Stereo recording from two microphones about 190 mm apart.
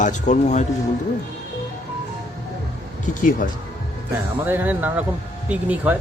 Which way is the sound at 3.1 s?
45° left (ahead or behind).